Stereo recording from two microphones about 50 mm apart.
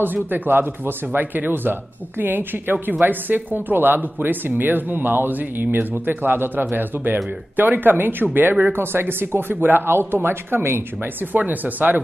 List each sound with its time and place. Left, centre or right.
0.0 s speech: right
11.3 s speech: right